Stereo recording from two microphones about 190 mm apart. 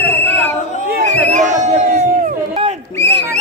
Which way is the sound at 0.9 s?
40° right (ahead or behind).